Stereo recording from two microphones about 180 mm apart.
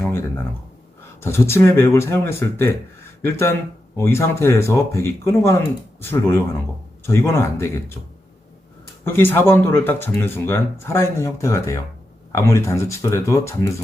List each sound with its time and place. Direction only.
0.0 s a sound: 10° left (ahead or behind)
1.2 s speech: 15° left (ahead or behind)
9.0 s speech: 10° left (ahead or behind)